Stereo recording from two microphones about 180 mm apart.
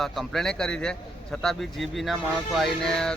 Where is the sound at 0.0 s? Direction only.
Centre (ahead or behind).